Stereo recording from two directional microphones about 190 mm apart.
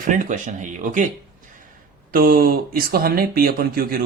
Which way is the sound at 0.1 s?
40° right (ahead or behind).